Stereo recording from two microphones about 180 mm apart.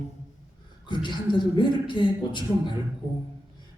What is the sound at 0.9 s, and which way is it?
Speech, 25° left (ahead or behind).